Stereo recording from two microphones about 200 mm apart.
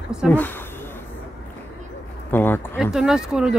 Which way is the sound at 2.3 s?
10° left (ahead or behind).